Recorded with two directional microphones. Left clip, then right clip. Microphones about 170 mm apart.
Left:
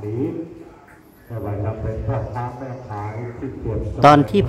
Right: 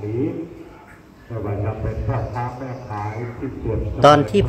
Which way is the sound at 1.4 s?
90° left.